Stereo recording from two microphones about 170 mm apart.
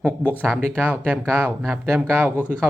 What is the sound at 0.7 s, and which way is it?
Speech, 10° right (ahead or behind).